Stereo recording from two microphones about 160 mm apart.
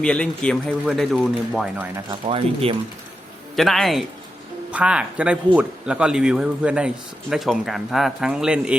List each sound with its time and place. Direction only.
0.0 s a man's voice: 5° left (ahead or behind)
2.2 s speech: 35° right (ahead or behind)
3.5 s a man's voice: centre (ahead or behind)